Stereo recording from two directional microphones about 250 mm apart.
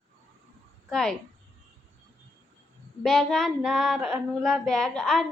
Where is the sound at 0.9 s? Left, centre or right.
Centre.